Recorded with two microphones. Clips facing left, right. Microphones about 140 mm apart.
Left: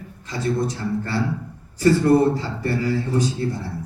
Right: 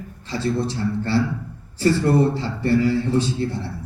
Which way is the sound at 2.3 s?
30° right (ahead or behind).